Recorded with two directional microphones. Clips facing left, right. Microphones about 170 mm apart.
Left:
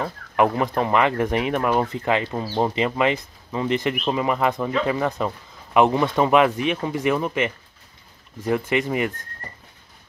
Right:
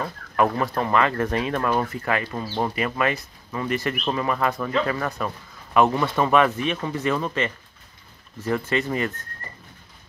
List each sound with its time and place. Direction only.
0.0 s speech: 20° left (ahead or behind)